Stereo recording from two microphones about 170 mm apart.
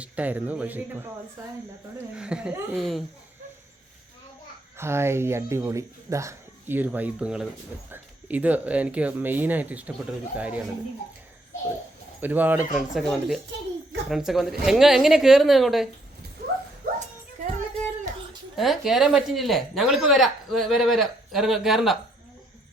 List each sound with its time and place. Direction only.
0.0 s speech: 10° right (ahead or behind)
2.1 s speech: 5° right (ahead or behind)
4.8 s speech: 15° right (ahead or behind)
12.2 s speech: 10° right (ahead or behind)
16.8 s a sound: 55° right (ahead or behind)
18.5 s speech: centre (ahead or behind)